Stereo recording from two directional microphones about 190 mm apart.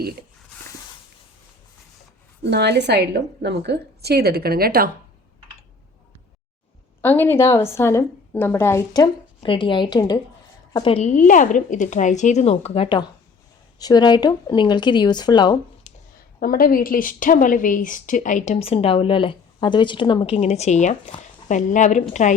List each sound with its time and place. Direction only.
2.4 s a woman's voice: 60° right (ahead or behind)
7.0 s a woman's voice: 10° left (ahead or behind)
16.4 s a woman's voice: 50° left (ahead or behind)